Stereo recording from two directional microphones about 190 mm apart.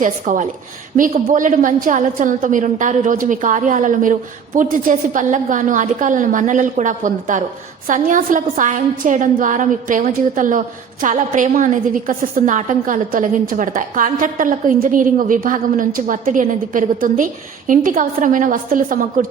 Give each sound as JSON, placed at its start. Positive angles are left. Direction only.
{"t": 0.0, "sound": "a woman's voice", "side_deg": -40}